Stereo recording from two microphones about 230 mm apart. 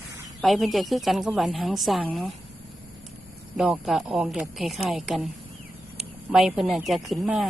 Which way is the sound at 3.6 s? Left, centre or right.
Centre.